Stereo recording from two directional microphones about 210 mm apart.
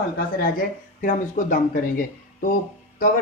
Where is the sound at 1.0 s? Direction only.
40° left (ahead or behind).